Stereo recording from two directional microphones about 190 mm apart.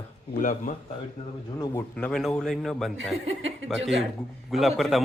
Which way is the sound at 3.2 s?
85° right.